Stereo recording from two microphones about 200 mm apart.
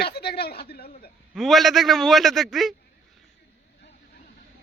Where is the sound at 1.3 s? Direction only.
Centre (ahead or behind).